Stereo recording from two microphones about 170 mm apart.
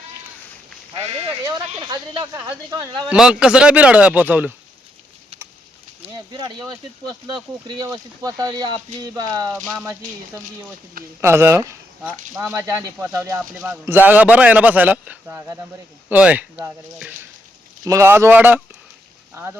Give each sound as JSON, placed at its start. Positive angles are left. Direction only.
{"t": 0.9, "sound": "speech", "side_deg": -35}
{"t": 3.1, "sound": "speech", "side_deg": -5}
{"t": 6.1, "sound": "speech", "side_deg": -20}
{"t": 11.2, "sound": "speech", "side_deg": -15}